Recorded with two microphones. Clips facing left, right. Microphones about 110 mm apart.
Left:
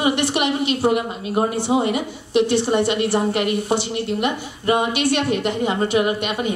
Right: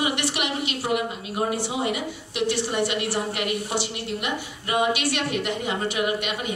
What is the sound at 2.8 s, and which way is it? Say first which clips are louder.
A woman's voice: left 6 dB; 25° left (ahead or behind).